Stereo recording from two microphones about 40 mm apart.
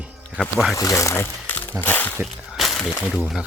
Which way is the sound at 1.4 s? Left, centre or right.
Left.